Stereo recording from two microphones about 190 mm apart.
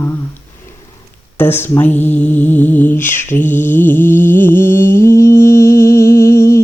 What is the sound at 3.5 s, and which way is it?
Music, 10° left (ahead or behind).